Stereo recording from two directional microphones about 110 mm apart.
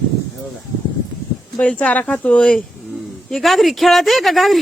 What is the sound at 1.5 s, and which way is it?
Speech, 10° left (ahead or behind).